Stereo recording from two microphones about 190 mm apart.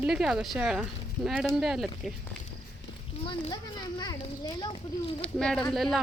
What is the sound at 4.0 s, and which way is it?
Speech, 20° left (ahead or behind).